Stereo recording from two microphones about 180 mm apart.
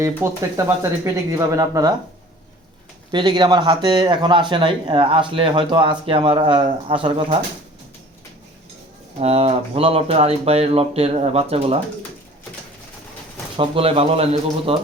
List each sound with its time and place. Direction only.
0.2 s speech: 15° right (ahead or behind)
3.1 s speech: 25° right (ahead or behind)
9.1 s speech: 35° right (ahead or behind)
13.6 s speech: 30° right (ahead or behind)